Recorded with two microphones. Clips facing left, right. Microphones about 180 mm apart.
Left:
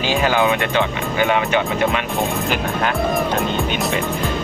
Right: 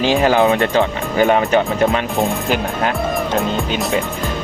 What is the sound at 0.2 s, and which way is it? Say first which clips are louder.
Speech: right 2 dB; 35° right (ahead or behind).